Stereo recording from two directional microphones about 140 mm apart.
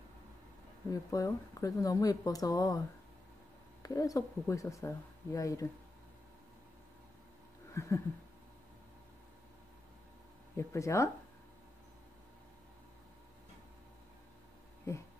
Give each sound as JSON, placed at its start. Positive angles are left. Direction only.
{"t": 1.1, "sound": "speech", "side_deg": 25}
{"t": 3.8, "sound": "speech", "side_deg": 25}
{"t": 7.7, "sound": "a sound", "side_deg": 20}
{"t": 10.5, "sound": "speech", "side_deg": 20}